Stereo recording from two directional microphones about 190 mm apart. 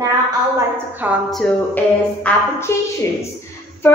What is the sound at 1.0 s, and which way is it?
A woman's voice, 5° right (ahead or behind).